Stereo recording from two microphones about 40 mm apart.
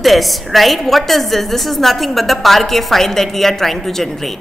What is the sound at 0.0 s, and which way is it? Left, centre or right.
A woman's voice, centre.